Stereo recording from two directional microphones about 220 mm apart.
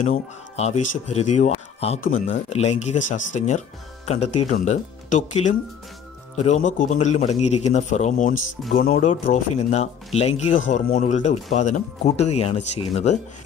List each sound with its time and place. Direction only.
0.0 s speech: 30° left (ahead or behind)